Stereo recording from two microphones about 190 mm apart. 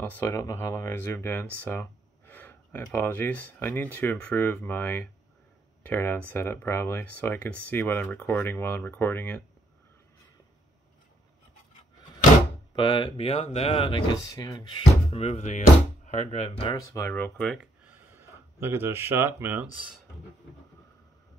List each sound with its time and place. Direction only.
0.0 s speech: 10° left (ahead or behind)
12.7 s speech: 25° left (ahead or behind)
16.7 s speech: 15° left (ahead or behind)
17.8 s speech: 10° right (ahead or behind)